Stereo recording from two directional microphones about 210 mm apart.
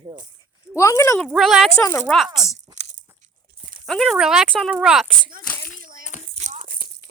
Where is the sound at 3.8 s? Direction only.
Centre (ahead or behind).